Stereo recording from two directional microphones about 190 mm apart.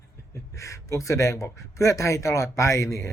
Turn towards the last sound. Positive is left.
turn(degrees=15)  # may be behind; listen again after turning